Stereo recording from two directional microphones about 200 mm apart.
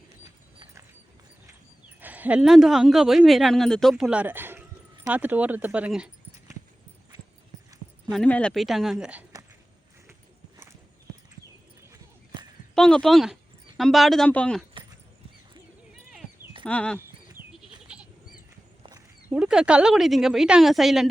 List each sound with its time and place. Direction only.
0.6 s horse: 15° right (ahead or behind)
2.0 s speech: 10° right (ahead or behind)
8.1 s speech: 5° left (ahead or behind)
12.7 s speech: 5° left (ahead or behind)
16.6 s speech: 5° left (ahead or behind)
17.6 s goat: 5° right (ahead or behind)
18.8 s a sound: 20° right (ahead or behind)
19.3 s speech: 5° right (ahead or behind)